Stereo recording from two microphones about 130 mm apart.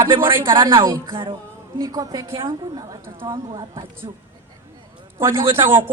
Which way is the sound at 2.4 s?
35° right (ahead or behind).